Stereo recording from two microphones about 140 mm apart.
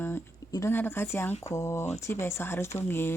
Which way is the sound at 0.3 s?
25° left (ahead or behind).